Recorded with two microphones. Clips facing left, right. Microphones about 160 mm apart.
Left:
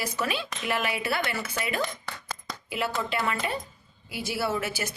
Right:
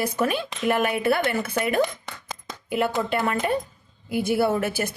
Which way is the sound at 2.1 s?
20° right (ahead or behind).